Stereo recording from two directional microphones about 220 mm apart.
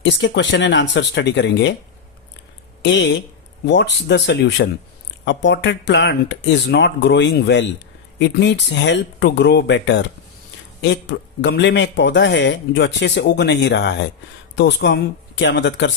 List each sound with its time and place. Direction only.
0.0 s speech: 55° left (ahead or behind)
2.8 s speech: 55° left (ahead or behind)
11.3 s speech: 55° left (ahead or behind)